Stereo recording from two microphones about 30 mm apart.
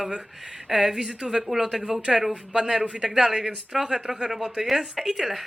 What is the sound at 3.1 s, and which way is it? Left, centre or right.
Speech, centre.